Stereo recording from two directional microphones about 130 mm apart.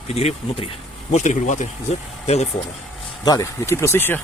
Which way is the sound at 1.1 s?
65° left (ahead or behind).